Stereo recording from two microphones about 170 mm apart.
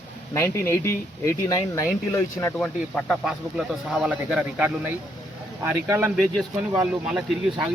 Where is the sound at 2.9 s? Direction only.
Centre (ahead or behind).